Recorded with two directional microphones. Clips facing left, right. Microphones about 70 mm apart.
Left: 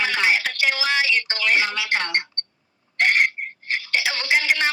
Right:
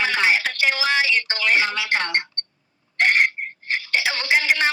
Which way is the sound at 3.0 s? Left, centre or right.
Right.